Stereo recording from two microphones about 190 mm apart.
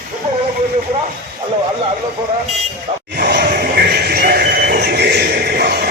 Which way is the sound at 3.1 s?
60° right (ahead or behind).